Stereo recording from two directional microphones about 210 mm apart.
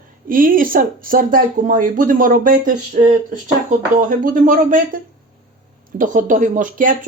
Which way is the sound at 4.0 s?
40° right (ahead or behind).